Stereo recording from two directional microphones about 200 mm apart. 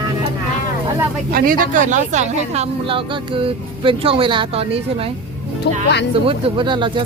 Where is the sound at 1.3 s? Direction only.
45° right (ahead or behind); by 5.0 s 30° right (ahead or behind).